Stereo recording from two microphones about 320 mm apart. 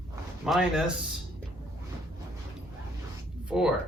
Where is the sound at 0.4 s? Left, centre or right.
Centre.